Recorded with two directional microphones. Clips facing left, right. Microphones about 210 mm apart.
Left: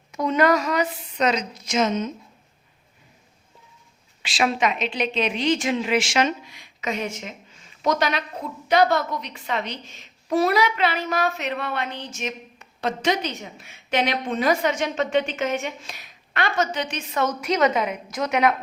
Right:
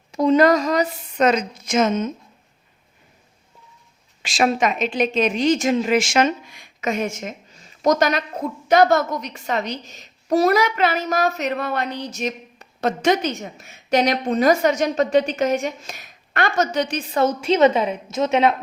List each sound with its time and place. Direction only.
0.1 s a woman's voice: 30° right (ahead or behind)
1.1 s a woman's voice: 50° right (ahead or behind)
4.2 s a woman's voice: 45° right (ahead or behind); by 18.5 s 25° right (ahead or behind)